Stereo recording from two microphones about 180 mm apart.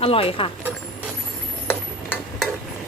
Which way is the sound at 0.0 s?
30° left (ahead or behind).